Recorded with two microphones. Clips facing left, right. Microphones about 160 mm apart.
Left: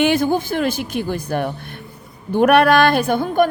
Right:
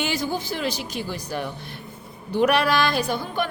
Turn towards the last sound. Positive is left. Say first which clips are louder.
# left 8 dB
turn(degrees=50)  # may be behind; listen again after turning